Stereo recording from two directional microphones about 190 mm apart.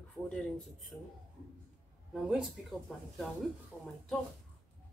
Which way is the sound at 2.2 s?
Centre (ahead or behind).